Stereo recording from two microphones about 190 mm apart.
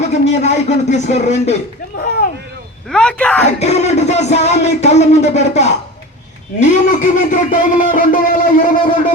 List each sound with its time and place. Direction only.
0.1 s speech: 35° left (ahead or behind)
2.0 s a sound: 55° left (ahead or behind)
2.9 s speech: 5° left (ahead or behind)
3.6 s a man's voice: 35° left (ahead or behind)